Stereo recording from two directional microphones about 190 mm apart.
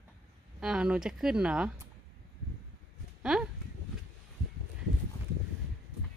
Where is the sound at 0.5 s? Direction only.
5° right (ahead or behind).